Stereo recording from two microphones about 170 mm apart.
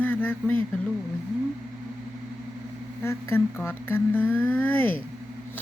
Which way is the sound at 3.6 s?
10° left (ahead or behind).